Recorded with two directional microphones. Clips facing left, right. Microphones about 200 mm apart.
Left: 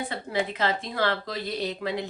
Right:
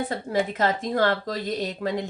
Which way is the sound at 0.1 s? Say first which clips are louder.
Right 3 dB; 40° right (ahead or behind).